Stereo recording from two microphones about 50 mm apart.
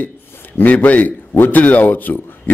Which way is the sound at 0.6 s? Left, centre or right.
Left.